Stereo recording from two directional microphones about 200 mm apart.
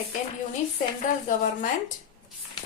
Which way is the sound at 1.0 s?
40° left (ahead or behind).